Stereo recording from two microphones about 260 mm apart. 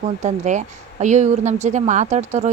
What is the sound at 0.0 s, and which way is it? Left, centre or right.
Speech, right.